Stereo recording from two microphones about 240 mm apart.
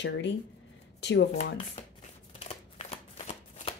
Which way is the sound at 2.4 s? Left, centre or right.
Left.